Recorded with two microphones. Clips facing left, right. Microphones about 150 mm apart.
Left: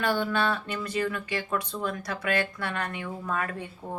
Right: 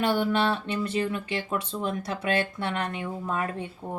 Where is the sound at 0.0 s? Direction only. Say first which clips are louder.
Right 2 dB; 25° right (ahead or behind).